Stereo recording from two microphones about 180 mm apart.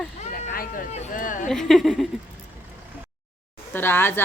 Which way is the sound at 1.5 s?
Centre (ahead or behind).